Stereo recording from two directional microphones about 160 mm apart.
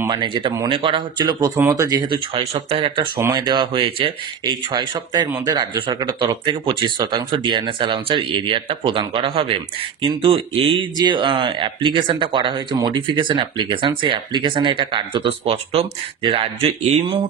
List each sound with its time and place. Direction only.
0.1 s speech: 30° right (ahead or behind)
3.2 s speech: 20° right (ahead or behind); by 17.2 s 40° right (ahead or behind)